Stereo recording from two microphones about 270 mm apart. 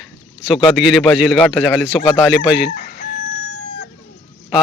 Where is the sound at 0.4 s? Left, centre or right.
Centre.